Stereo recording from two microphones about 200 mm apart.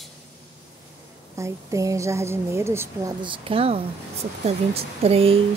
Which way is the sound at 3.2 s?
25° right (ahead or behind).